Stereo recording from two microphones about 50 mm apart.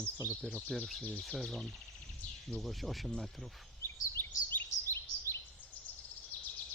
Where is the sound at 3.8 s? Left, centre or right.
Left.